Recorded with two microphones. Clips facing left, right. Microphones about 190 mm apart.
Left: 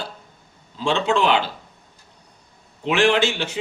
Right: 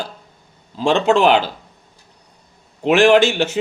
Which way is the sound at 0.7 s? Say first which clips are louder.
Right 5 dB; 50° right (ahead or behind).